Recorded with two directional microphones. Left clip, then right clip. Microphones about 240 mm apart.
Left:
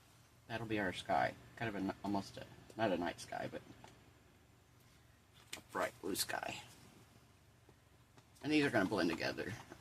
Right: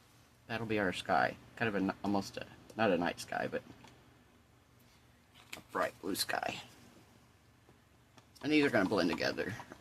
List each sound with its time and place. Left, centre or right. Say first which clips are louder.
0.4 s speech: right 5 dB; right
5.7 s speech: right 4 dB; centre
8.4 s speech: right 4 dB; centre